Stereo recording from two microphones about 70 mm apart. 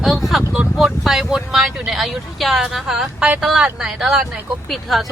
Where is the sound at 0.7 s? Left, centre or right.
Centre.